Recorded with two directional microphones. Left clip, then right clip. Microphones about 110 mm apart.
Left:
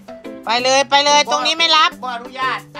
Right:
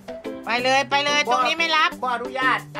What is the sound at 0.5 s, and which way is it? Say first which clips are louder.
Speech: left 6 dB; 25° left (ahead or behind).